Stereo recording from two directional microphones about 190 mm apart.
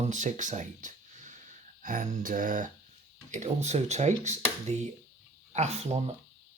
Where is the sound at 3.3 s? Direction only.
40° right (ahead or behind).